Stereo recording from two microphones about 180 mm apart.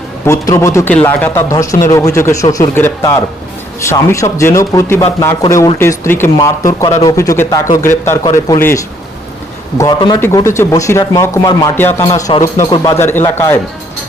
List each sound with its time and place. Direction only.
0.3 s a man's voice: 15° left (ahead or behind)